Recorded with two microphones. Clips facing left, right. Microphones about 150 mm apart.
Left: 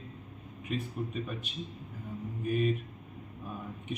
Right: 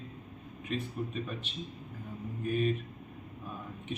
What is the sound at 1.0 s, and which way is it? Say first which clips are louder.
Speech: even; centre (ahead or behind).